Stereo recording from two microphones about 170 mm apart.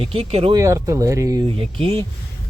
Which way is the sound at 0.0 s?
35° right (ahead or behind).